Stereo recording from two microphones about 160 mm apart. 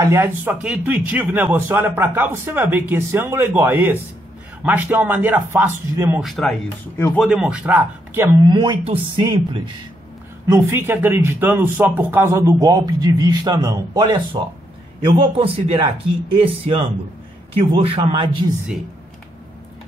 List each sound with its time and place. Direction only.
0.0 s speech: 15° right (ahead or behind)
6.2 s speech: centre (ahead or behind)
8.5 s speech: 30° right (ahead or behind)
10.5 s speech: 15° right (ahead or behind); by 18.4 s 35° right (ahead or behind)